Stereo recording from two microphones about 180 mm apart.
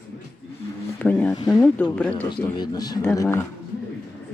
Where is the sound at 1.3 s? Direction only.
20° left (ahead or behind).